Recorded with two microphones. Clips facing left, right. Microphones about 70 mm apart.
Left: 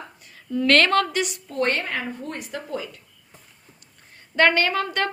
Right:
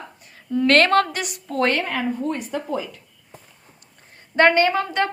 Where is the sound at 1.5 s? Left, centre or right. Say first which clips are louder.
Right 7 dB; right.